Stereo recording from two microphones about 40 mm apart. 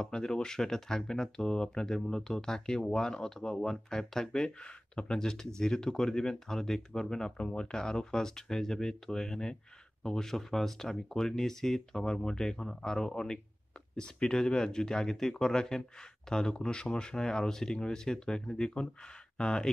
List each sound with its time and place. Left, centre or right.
0.0 s speech: centre
4.6 s speech: left; by 12.0 s centre
12.0 s speech: centre